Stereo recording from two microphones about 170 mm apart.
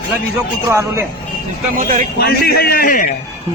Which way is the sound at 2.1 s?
70° left (ahead or behind).